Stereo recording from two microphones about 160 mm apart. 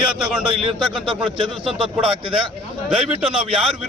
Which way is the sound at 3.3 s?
Centre (ahead or behind).